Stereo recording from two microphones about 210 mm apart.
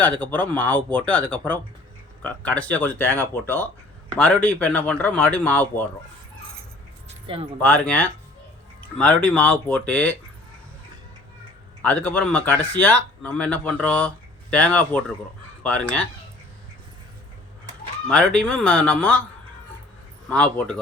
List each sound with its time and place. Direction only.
0.0 s speech: 5° left (ahead or behind)
2.2 s speech: 5° left (ahead or behind)
7.1 s a sound: 30° right (ahead or behind)
7.6 s speech: 5° left (ahead or behind)
11.8 s speech: 5° left (ahead or behind)
18.1 s speech: 5° left (ahead or behind)
20.3 s speech: 5° left (ahead or behind)